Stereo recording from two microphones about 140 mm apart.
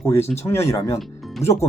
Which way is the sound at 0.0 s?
20° left (ahead or behind).